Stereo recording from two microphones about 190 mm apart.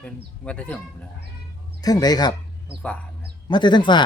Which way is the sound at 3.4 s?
25° left (ahead or behind).